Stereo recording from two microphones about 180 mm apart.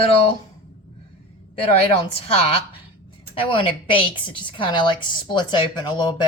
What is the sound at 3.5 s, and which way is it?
A woman's voice, 30° left (ahead or behind).